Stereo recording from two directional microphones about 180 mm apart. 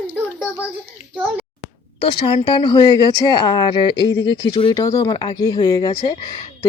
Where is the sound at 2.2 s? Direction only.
30° left (ahead or behind).